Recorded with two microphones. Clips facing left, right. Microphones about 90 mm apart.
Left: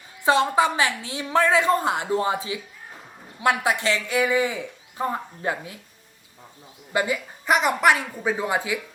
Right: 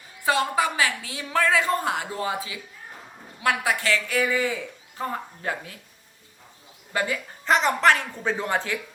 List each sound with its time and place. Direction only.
0.3 s a woman's voice: 25° left (ahead or behind)
6.9 s speech: 15° left (ahead or behind)